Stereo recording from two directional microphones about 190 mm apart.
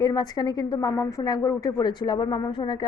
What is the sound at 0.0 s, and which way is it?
A woman's voice, 20° left (ahead or behind).